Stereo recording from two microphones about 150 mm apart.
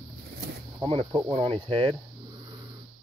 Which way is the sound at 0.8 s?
35° right (ahead or behind).